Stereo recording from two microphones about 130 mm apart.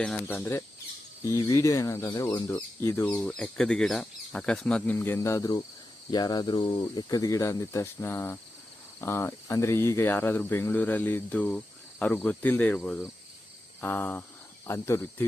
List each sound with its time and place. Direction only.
1.2 s speech: 25° left (ahead or behind)
2.3 s speech: 15° left (ahead or behind)
4.9 s speech: 20° left (ahead or behind)